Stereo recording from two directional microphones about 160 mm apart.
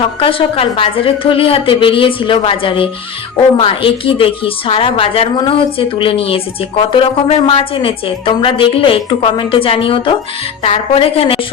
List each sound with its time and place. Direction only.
0.0 s a woman's voice: 35° left (ahead or behind)